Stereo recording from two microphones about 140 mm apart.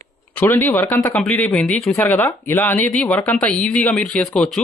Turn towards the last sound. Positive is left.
turn(degrees=5)  # may be behind; listen again after turning